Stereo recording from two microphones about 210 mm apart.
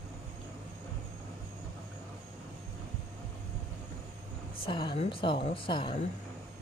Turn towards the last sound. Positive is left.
turn(degrees=25)  # may be behind; listen again after turning